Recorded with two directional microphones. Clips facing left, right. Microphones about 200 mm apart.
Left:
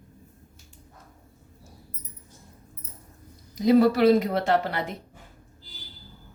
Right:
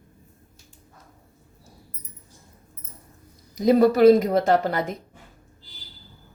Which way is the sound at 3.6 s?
45° right (ahead or behind).